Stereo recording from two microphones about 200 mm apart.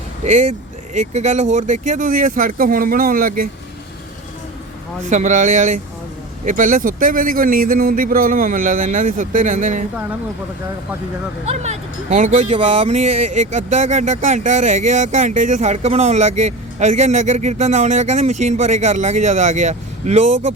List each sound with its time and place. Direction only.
0.3 s speech: 35° right (ahead or behind)
5.0 s speech: 40° right (ahead or behind)
11.6 s speech: 35° right (ahead or behind)